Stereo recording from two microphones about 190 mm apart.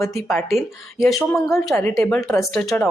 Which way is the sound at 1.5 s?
Centre (ahead or behind).